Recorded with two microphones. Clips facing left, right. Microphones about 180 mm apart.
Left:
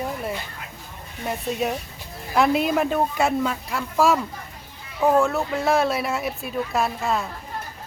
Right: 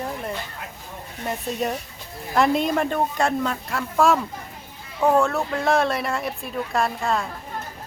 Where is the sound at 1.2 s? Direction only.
5° left (ahead or behind).